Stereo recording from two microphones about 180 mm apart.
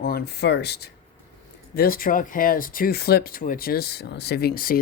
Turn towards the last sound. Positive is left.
turn(degrees=50)  # may be behind; listen again after turning